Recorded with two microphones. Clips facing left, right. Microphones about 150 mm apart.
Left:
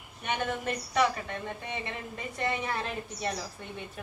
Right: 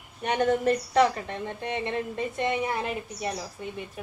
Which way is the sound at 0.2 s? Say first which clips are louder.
Right 8 dB; 35° right (ahead or behind).